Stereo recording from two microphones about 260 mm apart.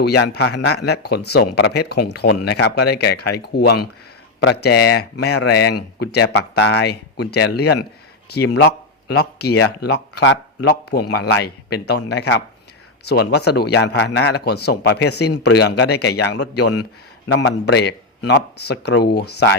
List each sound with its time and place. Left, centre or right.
0.0 s speech: left